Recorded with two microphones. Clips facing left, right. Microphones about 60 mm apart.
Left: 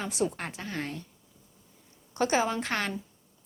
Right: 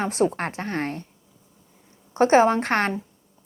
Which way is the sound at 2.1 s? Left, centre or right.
Right.